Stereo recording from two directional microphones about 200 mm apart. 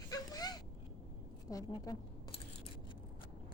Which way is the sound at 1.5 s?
20° left (ahead or behind).